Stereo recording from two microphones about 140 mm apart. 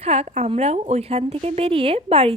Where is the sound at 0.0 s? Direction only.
50° right (ahead or behind).